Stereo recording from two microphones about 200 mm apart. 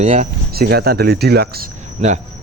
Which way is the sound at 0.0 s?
35° right (ahead or behind).